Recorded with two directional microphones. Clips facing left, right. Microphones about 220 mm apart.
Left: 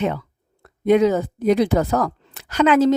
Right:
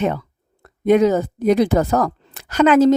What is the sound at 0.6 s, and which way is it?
Speech, 45° right (ahead or behind).